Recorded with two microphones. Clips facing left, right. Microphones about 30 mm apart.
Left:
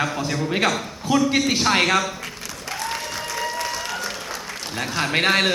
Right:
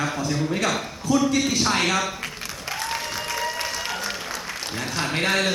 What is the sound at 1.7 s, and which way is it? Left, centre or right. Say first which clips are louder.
Speech: left 6 dB; left.